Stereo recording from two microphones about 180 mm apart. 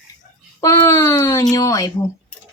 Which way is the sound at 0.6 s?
15° left (ahead or behind).